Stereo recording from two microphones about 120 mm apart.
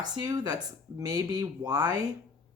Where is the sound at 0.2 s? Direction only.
35° right (ahead or behind).